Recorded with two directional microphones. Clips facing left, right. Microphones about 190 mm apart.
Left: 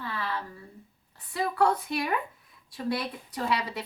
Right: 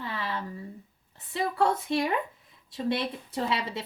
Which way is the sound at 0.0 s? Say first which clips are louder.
Even; 20° right (ahead or behind).